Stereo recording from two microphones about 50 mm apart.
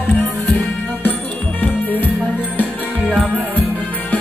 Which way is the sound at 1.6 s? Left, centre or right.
Left.